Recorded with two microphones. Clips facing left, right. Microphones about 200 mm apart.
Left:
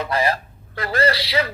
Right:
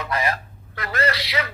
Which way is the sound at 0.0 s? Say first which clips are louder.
Left 4 dB; 30° left (ahead or behind).